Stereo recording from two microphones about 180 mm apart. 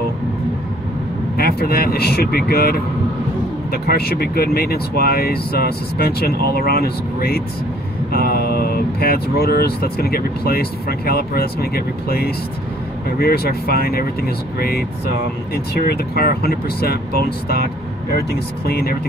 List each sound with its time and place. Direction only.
1.3 s speech: 60° left (ahead or behind)
18.7 s speech: 60° left (ahead or behind)